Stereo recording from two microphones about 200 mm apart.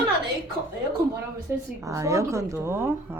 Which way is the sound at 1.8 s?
15° right (ahead or behind).